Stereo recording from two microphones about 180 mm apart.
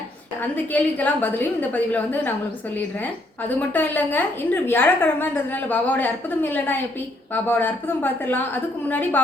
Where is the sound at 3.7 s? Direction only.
10° left (ahead or behind).